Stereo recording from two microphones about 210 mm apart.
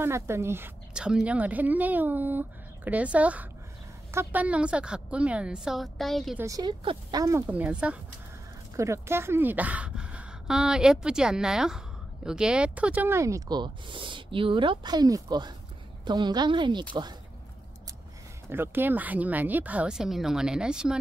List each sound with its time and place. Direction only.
0.0 s a woman's voice: 10° right (ahead or behind)
6.4 s a woman's voice: 20° right (ahead or behind)
18.5 s a woman's voice: 10° right (ahead or behind)